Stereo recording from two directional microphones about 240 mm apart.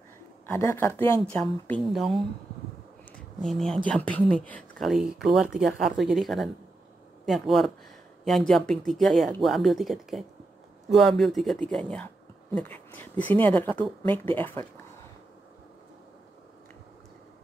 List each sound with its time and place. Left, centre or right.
0.5 s speech: centre